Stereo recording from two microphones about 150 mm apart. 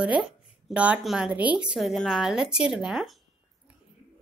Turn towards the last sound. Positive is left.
turn(degrees=0)  # may be behind; listen again after turning